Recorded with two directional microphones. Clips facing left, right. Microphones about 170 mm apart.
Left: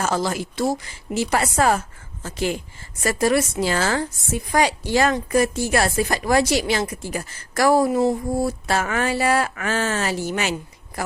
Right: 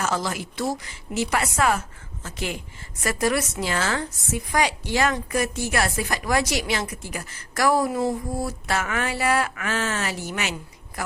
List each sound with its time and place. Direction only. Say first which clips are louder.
0.0 s speech: left 4 dB; 35° left (ahead or behind)